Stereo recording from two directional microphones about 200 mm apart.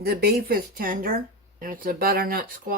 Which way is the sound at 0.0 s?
50° right (ahead or behind).